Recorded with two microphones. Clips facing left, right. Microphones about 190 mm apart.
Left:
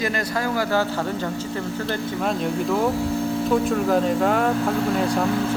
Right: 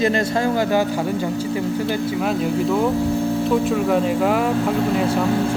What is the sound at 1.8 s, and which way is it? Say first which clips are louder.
Speech: right 3 dB; 5° right (ahead or behind).